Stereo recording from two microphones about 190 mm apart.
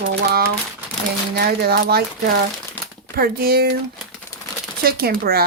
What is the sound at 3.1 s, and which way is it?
Speech, 50° right (ahead or behind).